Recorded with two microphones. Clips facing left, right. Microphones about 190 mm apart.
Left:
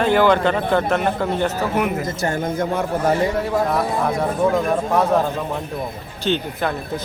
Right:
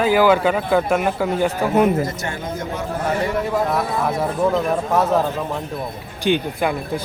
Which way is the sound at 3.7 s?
5° right (ahead or behind).